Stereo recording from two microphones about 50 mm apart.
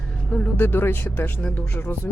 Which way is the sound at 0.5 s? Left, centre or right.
Left.